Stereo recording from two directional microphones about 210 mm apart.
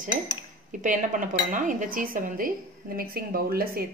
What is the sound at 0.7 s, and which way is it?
Dishes, 40° right (ahead or behind).